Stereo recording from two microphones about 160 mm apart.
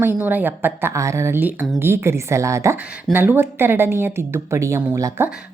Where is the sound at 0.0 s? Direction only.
10° right (ahead or behind).